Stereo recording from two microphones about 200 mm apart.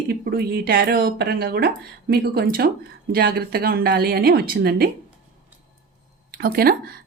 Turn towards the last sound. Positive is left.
turn(degrees=-45)  # may be behind; listen again after turning